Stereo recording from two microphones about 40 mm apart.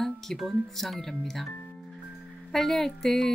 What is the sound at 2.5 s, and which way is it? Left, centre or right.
Speech, centre.